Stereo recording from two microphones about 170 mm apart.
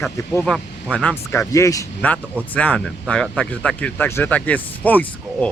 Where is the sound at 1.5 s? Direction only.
20° left (ahead or behind).